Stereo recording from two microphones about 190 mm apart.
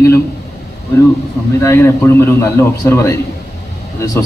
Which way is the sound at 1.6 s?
15° left (ahead or behind).